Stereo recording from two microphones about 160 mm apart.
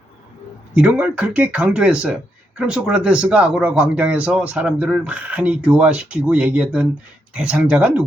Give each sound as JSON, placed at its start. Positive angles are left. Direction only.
{"t": 0.8, "sound": "speech", "side_deg": -5}